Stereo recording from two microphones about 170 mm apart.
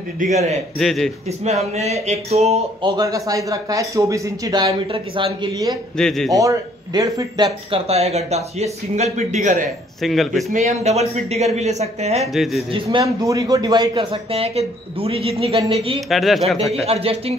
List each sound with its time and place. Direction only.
0.2 s speech: 40° right (ahead or behind)
0.7 s speech: centre (ahead or behind)
1.2 s speech: 40° right (ahead or behind)
3.0 s speech: 20° right (ahead or behind)
5.9 s speech: 5° left (ahead or behind)
6.3 s speech: 20° right (ahead or behind)
7.7 s speech: 35° right (ahead or behind)
10.0 s speech: centre (ahead or behind)
10.5 s speech: 45° right (ahead or behind)
12.3 s speech: centre (ahead or behind)
12.7 s speech: 25° right (ahead or behind)
16.1 s speech: centre (ahead or behind)
16.8 s speech: 35° right (ahead or behind)